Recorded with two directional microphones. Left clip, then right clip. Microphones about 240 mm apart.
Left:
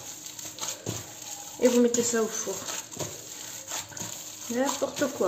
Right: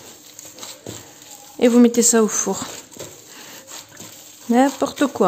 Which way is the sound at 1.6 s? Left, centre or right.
Right.